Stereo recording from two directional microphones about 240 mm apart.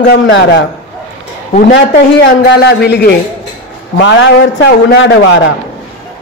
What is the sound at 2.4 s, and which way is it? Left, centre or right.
Speech, left.